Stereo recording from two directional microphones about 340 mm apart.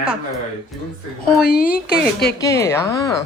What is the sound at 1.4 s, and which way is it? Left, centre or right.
Speech, left.